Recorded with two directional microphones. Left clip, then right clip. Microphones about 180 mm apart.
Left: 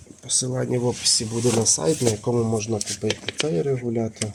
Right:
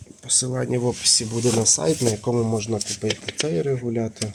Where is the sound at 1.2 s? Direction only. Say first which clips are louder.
Even; 5° left (ahead or behind).